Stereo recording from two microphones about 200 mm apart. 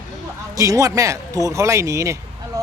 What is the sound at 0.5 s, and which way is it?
Speech, 15° right (ahead or behind).